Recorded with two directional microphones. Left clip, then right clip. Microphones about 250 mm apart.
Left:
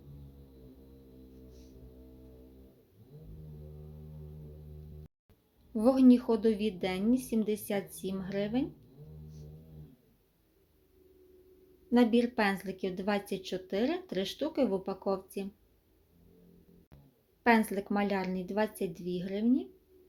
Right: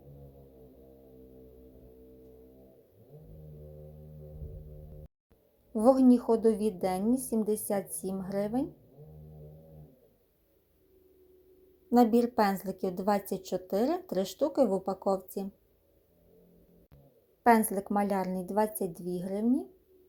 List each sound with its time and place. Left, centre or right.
5.7 s speech: centre
11.9 s speech: centre
17.4 s speech: centre